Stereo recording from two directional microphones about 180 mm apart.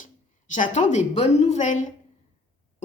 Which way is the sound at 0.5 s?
40° left (ahead or behind).